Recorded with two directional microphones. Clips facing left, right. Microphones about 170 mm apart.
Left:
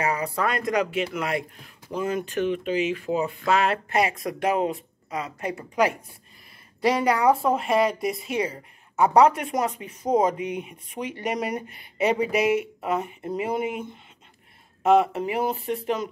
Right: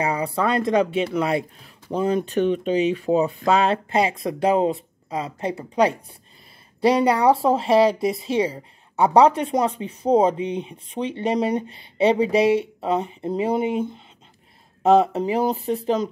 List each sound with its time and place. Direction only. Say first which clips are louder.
0.1 s a woman's voice: right 4 dB; 30° right (ahead or behind)
1.9 s a woman's voice: right 5 dB; 30° right (ahead or behind)